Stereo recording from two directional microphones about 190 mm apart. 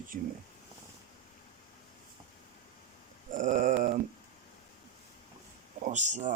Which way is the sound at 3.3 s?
40° right (ahead or behind).